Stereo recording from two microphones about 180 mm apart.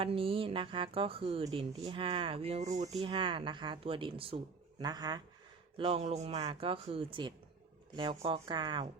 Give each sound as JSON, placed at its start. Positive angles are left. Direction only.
{"t": 0.0, "sound": "speech", "side_deg": -30}